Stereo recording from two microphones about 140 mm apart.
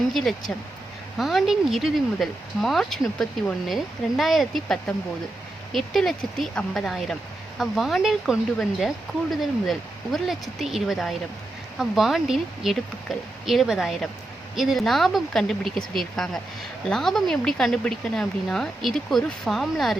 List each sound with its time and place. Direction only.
0.1 s speech: centre (ahead or behind)